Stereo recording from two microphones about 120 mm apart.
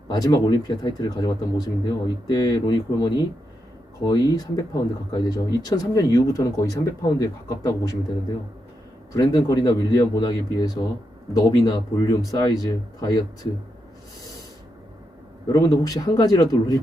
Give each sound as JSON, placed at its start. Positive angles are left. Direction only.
{"t": 0.1, "sound": "speech", "side_deg": 30}
{"t": 9.1, "sound": "speech", "side_deg": 30}
{"t": 15.5, "sound": "speech", "side_deg": 30}